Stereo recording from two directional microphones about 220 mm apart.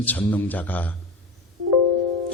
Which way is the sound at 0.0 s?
5° left (ahead or behind).